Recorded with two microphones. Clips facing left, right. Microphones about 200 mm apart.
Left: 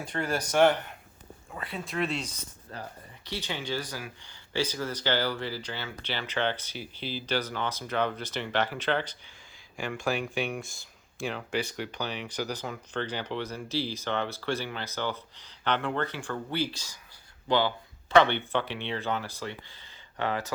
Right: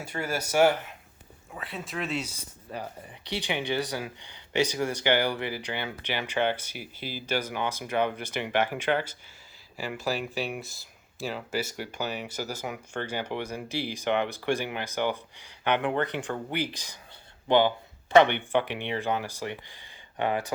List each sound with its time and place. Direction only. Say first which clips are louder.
0.0 s speech: left 1 dB; 5° right (ahead or behind)